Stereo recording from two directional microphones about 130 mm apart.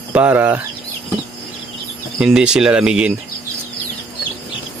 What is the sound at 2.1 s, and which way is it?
Speech, 5° right (ahead or behind).